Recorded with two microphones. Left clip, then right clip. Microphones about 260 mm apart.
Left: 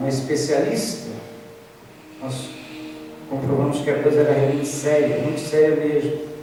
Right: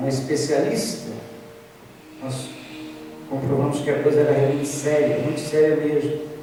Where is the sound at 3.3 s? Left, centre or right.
Centre.